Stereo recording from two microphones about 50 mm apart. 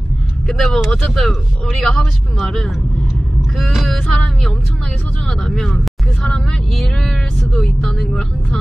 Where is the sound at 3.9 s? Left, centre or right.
Centre.